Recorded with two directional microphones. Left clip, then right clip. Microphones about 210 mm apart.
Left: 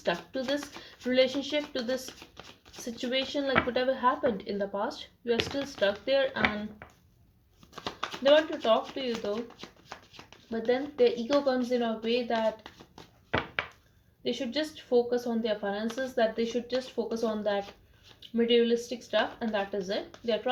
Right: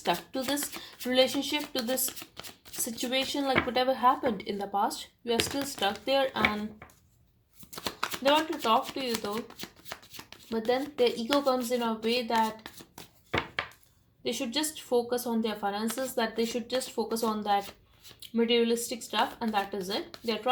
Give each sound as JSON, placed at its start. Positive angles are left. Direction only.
{"t": 0.0, "sound": "speech", "side_deg": -45}
{"t": 8.0, "sound": "speech", "side_deg": -45}